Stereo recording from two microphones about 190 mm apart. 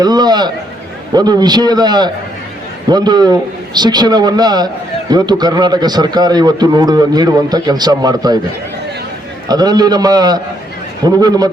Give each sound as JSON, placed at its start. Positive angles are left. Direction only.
{"t": 0.0, "sound": "speech", "side_deg": -20}
{"t": 9.5, "sound": "speech", "side_deg": -20}